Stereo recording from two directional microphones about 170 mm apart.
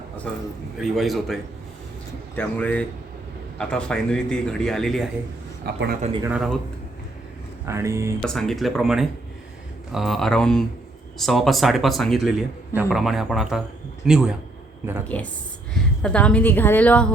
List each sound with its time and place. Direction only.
0.8 s a woman's voice: centre (ahead or behind)
5.6 s a man's voice: 70° right (ahead or behind)
6.2 s speech: 5° right (ahead or behind)
7.6 s speech: 15° right (ahead or behind)
8.2 s speech: 5° left (ahead or behind)
15.1 s a woman's voice: 10° left (ahead or behind)